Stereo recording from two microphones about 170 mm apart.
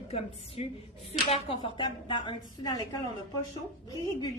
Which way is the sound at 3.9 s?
20° left (ahead or behind).